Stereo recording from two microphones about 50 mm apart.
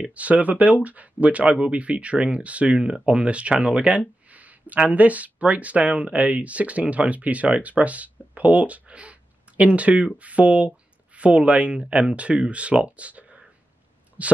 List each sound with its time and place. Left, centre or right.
0.1 s speech: right
2.8 s speech: centre